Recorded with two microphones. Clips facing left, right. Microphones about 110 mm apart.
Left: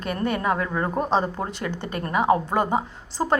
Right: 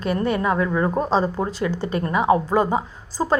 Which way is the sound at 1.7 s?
55° left (ahead or behind).